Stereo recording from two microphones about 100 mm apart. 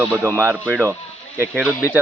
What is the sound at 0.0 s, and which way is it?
Speech, 25° right (ahead or behind).